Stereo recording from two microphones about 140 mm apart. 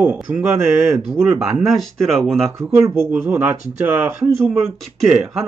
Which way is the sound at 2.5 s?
20° right (ahead or behind).